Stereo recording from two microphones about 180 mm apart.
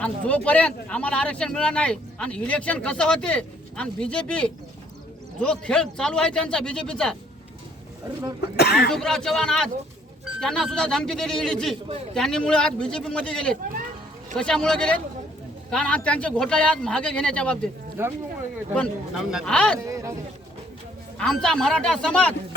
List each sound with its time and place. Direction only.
0.0 s a man's voice: 10° left (ahead or behind)
8.4 s speech: 65° left (ahead or behind)
8.9 s a man's voice: 5° left (ahead or behind)
18.0 s speech: 15° right (ahead or behind)
18.7 s a man's voice: centre (ahead or behind)
19.8 s a sound: 15° right (ahead or behind)
21.2 s a man's voice: 5° left (ahead or behind)